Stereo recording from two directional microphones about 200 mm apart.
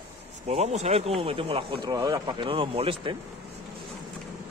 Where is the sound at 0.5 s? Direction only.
35° right (ahead or behind).